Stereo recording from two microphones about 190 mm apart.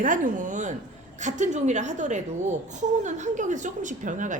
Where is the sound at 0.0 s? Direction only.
40° right (ahead or behind).